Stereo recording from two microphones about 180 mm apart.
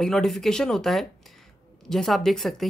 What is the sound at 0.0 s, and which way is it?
Speech, centre (ahead or behind).